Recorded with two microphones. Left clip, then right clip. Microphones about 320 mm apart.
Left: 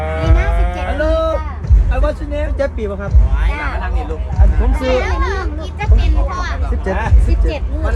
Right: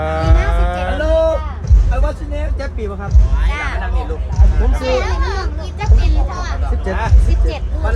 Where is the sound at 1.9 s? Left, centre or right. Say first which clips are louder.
Left 4 dB; centre.